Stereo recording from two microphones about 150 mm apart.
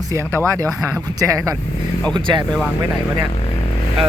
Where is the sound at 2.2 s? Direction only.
30° right (ahead or behind).